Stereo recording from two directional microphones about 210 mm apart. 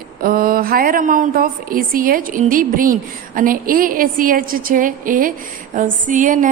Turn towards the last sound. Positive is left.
turn(degrees=-40)  # may be behind; listen again after turning